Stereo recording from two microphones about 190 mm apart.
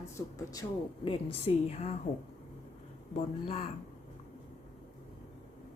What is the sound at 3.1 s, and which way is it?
Speech, 30° left (ahead or behind).